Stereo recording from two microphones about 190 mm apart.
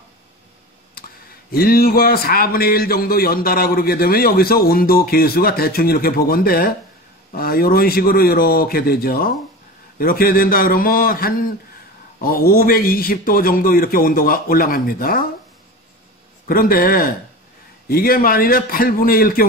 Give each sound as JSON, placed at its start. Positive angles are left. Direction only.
{"t": 1.5, "sound": "a man's voice", "side_deg": 50}
{"t": 16.4, "sound": "a man's voice", "side_deg": 50}